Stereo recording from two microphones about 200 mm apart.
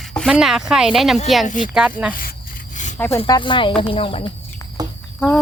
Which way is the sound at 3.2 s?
20° left (ahead or behind).